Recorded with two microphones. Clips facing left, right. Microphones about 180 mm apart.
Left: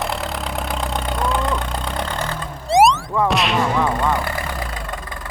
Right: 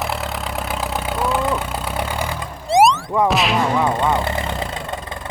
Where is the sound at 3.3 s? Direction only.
Centre (ahead or behind).